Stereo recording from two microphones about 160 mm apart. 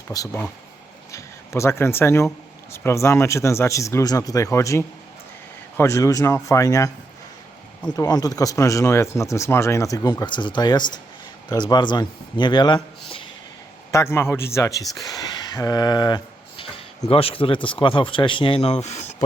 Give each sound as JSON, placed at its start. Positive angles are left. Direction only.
{"t": 0.1, "sound": "speech", "side_deg": 20}
{"t": 7.9, "sound": "speech", "side_deg": 25}
{"t": 13.9, "sound": "a man's voice", "side_deg": 15}